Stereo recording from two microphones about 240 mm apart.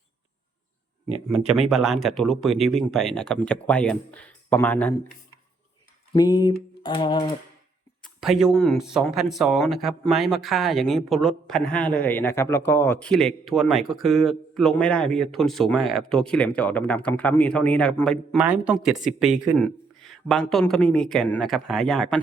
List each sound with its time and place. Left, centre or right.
1.4 s speech: right
1.7 s speech: centre
6.1 s a sound: centre
8.0 s speech: centre